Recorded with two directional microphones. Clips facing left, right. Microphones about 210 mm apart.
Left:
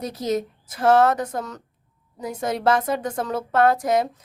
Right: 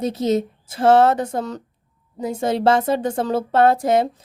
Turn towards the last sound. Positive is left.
turn(degrees=-30)  # may be behind; listen again after turning